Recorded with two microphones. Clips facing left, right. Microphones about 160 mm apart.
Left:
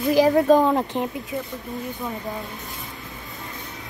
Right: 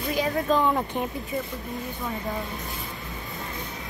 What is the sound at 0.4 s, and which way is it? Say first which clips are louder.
Speech: left 7 dB; 40° left (ahead or behind).